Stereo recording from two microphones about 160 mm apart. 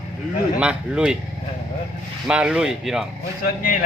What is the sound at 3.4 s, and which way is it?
Speech, 65° left (ahead or behind).